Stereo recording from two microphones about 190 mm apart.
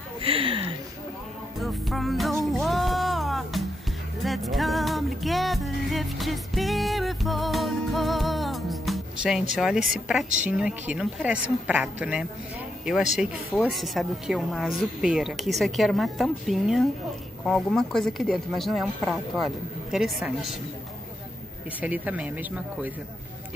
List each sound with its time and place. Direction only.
0.2 s a sound: 30° right (ahead or behind)
1.6 s music: centre (ahead or behind)
9.6 s speech: 5° right (ahead or behind)
19.9 s speech: centre (ahead or behind)
21.8 s speech: 10° right (ahead or behind)